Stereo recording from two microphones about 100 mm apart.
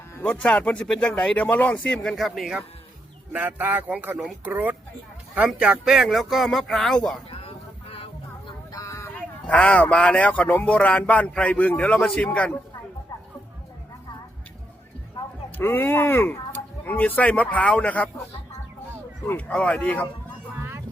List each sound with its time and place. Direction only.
0.2 s speech: 15° left (ahead or behind); by 2.6 s centre (ahead or behind)
3.3 s speech: 15° right (ahead or behind); by 7.2 s 5° left (ahead or behind)
7.3 s vehicle: 85° left
8.7 s vehicle: 35° left (ahead or behind)
9.1 s speech: 10° left (ahead or behind)
15.5 s speech: 20° left (ahead or behind)
19.5 s speech: 10° left (ahead or behind)